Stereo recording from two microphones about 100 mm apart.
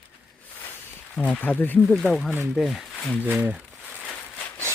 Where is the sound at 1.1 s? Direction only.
15° left (ahead or behind).